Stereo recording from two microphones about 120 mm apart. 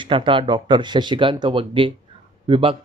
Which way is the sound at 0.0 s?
45° right (ahead or behind).